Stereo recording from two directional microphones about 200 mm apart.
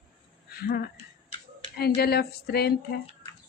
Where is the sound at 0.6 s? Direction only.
50° left (ahead or behind).